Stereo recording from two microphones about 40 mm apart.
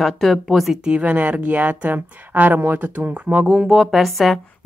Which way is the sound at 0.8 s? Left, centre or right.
Right.